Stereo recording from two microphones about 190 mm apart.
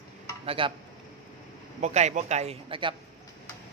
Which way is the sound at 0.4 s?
30° right (ahead or behind).